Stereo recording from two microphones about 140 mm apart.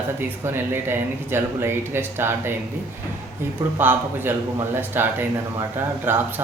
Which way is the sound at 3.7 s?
15° right (ahead or behind).